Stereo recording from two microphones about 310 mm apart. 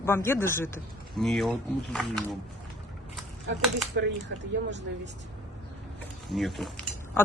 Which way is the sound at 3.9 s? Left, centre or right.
Right.